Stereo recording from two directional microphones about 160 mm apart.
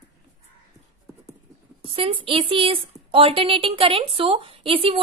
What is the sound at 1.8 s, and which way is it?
A woman's voice, 35° right (ahead or behind).